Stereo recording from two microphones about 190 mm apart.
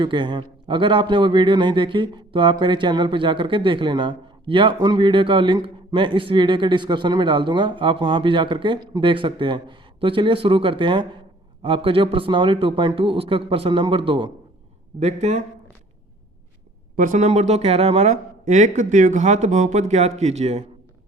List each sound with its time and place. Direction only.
0.0 s a man's voice: 25° right (ahead or behind)
14.9 s speech: 35° right (ahead or behind)
17.0 s speech: 40° right (ahead or behind)